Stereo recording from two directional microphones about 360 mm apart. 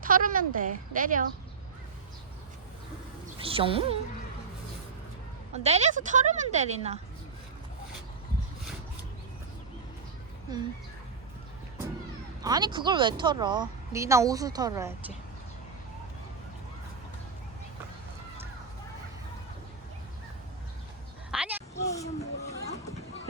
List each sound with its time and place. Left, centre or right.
0.0 s speech: right
3.2 s a woman's voice: centre
5.5 s speech: centre
12.4 s a woman's voice: centre
21.2 s a sound: centre
21.8 s a sound: centre